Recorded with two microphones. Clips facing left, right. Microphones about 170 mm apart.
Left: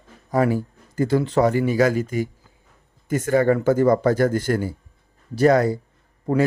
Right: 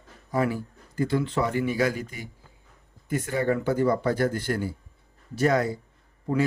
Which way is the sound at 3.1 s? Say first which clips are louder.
Left 7 dB; 90° left.